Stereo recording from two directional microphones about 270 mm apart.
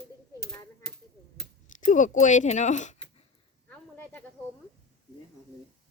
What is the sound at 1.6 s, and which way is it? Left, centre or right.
Speech, left.